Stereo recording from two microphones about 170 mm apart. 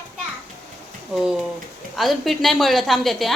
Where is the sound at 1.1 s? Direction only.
5° right (ahead or behind).